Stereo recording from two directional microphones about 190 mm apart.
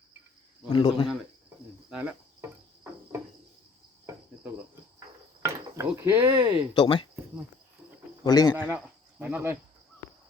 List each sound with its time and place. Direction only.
0.7 s speech: 25° left (ahead or behind)
1.9 s cricket: 5° right (ahead or behind)
4.0 s cricket: 15° right (ahead or behind)
5.4 s wood: 15° right (ahead or behind)
6.7 s speech: 25° left (ahead or behind)
8.2 s speech: 20° left (ahead or behind)
8.7 s cricket: 10° right (ahead or behind)